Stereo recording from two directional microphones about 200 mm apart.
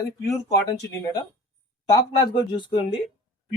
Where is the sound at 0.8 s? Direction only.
20° left (ahead or behind).